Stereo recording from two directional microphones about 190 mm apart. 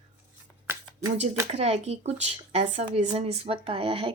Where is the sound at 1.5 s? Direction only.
35° right (ahead or behind).